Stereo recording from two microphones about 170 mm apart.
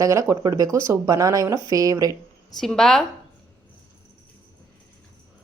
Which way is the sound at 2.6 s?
5° left (ahead or behind).